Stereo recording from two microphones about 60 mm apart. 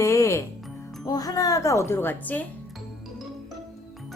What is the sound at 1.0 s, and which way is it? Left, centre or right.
Speech, left.